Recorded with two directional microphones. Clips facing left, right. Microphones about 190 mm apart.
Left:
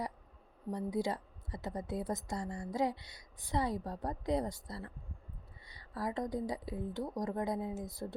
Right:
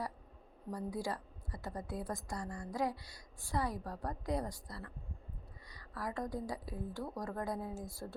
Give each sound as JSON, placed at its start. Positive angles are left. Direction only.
{"t": 0.7, "sound": "a woman's voice", "side_deg": 20}